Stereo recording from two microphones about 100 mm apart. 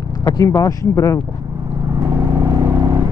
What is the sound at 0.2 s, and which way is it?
Speech, 40° left (ahead or behind).